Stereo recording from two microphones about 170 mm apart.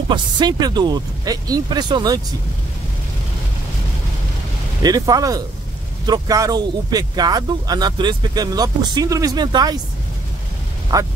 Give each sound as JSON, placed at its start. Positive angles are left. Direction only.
{"t": 0.1, "sound": "speech", "side_deg": -25}
{"t": 4.8, "sound": "speech", "side_deg": -20}
{"t": 10.9, "sound": "speech", "side_deg": -20}